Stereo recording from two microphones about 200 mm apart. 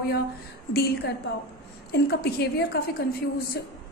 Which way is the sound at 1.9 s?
55° left (ahead or behind).